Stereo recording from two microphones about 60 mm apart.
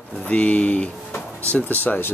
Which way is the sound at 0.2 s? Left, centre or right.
Left.